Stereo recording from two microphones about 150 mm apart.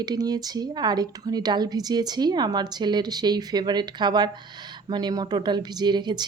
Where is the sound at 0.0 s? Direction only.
25° right (ahead or behind).